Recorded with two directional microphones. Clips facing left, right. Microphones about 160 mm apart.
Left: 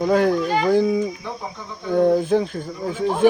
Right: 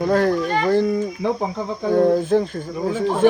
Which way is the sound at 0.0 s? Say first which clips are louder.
Even; centre (ahead or behind).